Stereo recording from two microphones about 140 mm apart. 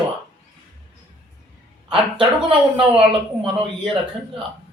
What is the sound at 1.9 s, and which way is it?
Speech, 40° right (ahead or behind).